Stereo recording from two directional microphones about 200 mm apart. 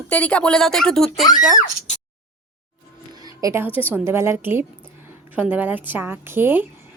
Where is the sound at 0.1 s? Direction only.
5° left (ahead or behind).